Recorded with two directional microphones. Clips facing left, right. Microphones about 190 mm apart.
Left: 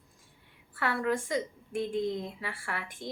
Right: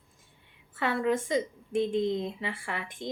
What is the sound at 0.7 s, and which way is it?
A woman's voice, 20° right (ahead or behind).